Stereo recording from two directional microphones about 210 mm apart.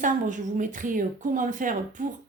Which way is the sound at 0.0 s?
40° right (ahead or behind).